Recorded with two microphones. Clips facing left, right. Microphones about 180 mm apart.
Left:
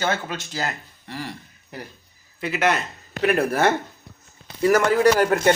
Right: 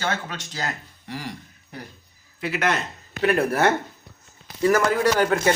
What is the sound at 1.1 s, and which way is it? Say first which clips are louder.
Speech: even; 15° right (ahead or behind).